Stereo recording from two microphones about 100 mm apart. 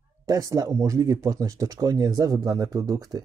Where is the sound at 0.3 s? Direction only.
40° right (ahead or behind).